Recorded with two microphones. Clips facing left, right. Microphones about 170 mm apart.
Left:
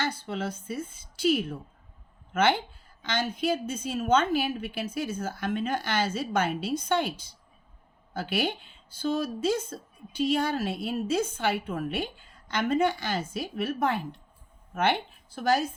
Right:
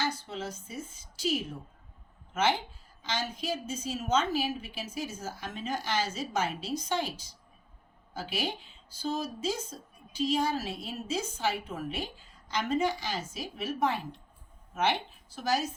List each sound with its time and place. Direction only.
0.0 s a woman's voice: 55° left (ahead or behind)